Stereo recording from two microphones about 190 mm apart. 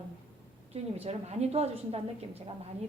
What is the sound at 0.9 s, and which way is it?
A woman's voice, 35° right (ahead or behind).